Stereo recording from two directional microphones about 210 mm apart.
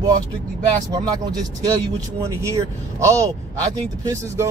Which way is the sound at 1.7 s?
15° right (ahead or behind).